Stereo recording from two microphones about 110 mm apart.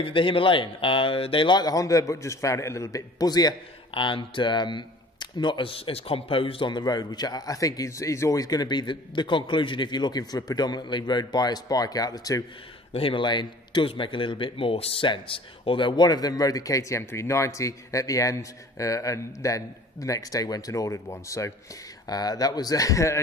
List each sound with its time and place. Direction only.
0.0 s a man's voice: 55° left (ahead or behind); by 3.5 s 35° left (ahead or behind)
3.9 s a man's voice: 50° left (ahead or behind); by 12.4 s 35° left (ahead or behind)
12.9 s a man's voice: 55° left (ahead or behind); by 23.1 s 30° left (ahead or behind)